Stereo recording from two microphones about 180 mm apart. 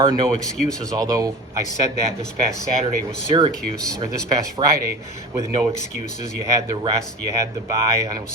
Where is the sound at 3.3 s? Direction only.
35° right (ahead or behind).